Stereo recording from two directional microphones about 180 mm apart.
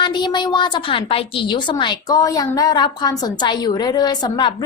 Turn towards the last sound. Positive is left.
turn(degrees=25)  # may be behind; listen again after turning